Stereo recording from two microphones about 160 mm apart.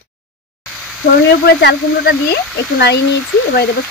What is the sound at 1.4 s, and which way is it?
Speech, 85° left.